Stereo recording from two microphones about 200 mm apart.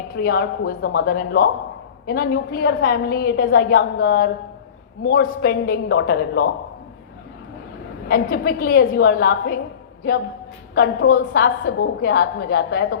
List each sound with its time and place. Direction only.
0.2 s a woman's voice: 50° left (ahead or behind)
8.0 s a woman's voice: 50° left (ahead or behind)
11.1 s a woman's voice: 50° left (ahead or behind)